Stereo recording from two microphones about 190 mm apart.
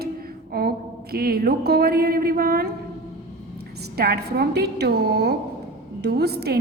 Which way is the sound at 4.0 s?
55° right (ahead or behind).